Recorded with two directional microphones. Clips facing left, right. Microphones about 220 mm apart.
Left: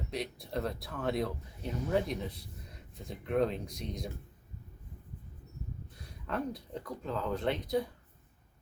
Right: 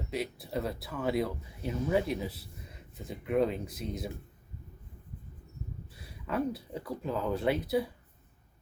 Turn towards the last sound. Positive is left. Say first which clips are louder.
# right 3 dB
turn(degrees=-5)  # may be behind; listen again after turning